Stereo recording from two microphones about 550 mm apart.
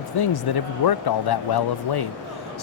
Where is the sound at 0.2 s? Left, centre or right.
Left.